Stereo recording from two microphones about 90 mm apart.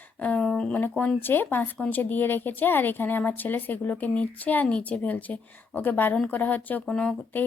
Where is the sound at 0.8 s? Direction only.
20° left (ahead or behind).